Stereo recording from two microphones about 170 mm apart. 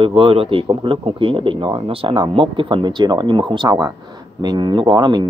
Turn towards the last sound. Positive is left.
turn(degrees=-25)  # may be behind; listen again after turning